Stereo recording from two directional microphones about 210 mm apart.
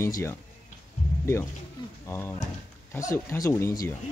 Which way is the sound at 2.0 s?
10° left (ahead or behind).